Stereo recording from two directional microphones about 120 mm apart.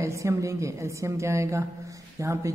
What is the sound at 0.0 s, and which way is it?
A woman's voice, 25° right (ahead or behind).